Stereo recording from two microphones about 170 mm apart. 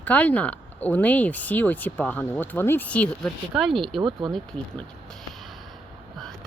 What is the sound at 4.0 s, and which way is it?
Speech, 30° right (ahead or behind).